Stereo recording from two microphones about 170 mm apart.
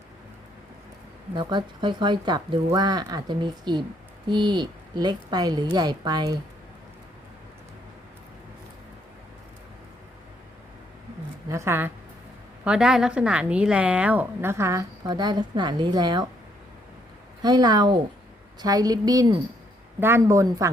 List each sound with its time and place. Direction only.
1.4 s speech: 25° right (ahead or behind)
11.4 s speech: 15° right (ahead or behind)
12.6 s a woman's voice: 5° right (ahead or behind); by 16.2 s 25° right (ahead or behind)
17.4 s speech: 25° right (ahead or behind)